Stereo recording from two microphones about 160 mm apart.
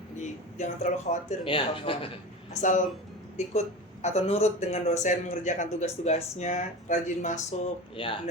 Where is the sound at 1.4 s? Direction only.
35° left (ahead or behind).